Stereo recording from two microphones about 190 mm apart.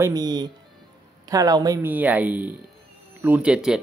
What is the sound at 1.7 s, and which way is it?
Speech, 10° right (ahead or behind).